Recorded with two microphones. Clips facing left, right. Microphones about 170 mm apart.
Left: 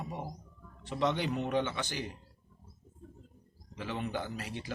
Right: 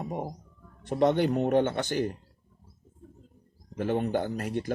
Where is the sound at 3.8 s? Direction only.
50° right (ahead or behind).